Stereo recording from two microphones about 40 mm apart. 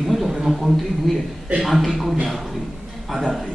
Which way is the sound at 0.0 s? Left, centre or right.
Centre.